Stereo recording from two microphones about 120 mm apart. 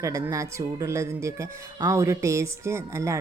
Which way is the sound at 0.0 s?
25° right (ahead or behind).